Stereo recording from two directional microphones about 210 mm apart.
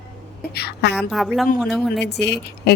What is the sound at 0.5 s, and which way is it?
Speech, 50° left (ahead or behind).